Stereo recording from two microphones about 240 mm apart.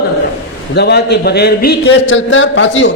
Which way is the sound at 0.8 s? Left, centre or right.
Left.